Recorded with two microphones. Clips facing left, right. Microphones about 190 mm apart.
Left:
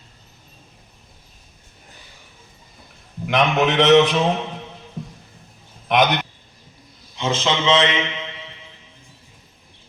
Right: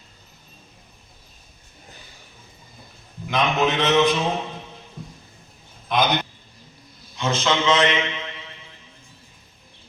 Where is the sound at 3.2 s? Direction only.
75° left (ahead or behind).